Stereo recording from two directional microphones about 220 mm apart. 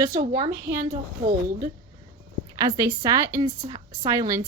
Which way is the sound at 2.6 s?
15° right (ahead or behind).